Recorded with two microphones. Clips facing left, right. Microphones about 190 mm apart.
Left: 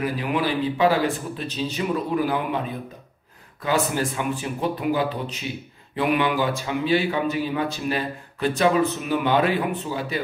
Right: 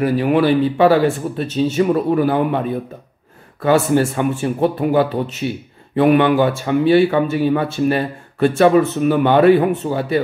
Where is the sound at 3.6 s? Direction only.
60° right (ahead or behind).